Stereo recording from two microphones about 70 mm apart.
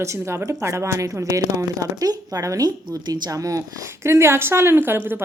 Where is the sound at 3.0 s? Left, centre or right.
Right.